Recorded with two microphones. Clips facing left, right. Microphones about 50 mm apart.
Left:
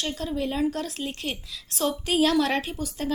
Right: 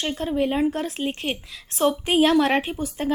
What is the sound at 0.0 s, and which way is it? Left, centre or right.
A woman's voice, right.